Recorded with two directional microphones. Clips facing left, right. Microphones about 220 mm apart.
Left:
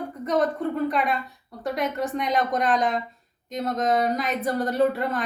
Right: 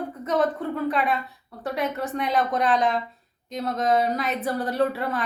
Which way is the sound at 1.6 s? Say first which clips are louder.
Left 1 dB; centre (ahead or behind).